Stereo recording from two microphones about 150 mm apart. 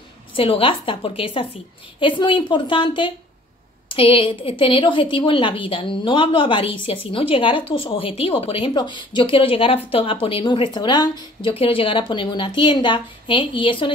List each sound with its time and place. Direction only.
0.3 s a woman's voice: 35° left (ahead or behind)